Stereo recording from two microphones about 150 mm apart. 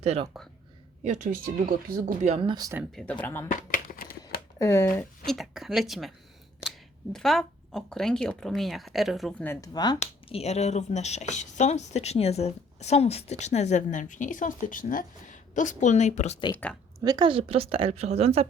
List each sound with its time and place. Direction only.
0.0 s speech: 45° right (ahead or behind); by 2.3 s 65° right (ahead or behind)
2.3 s a woman's voice: 35° right (ahead or behind)
2.9 s speech: 5° left (ahead or behind)
3.5 s a sound: 65° left (ahead or behind)
4.2 s a sound: 20° left (ahead or behind)
5.2 s speech: centre (ahead or behind)
9.4 s speech: 15° left (ahead or behind)
9.7 s speech: 30° left (ahead or behind)
10.0 s speech: 45° left (ahead or behind)
17.0 s a woman's voice: 30° right (ahead or behind)